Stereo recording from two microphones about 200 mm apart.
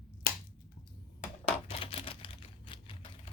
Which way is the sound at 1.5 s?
30° left (ahead or behind).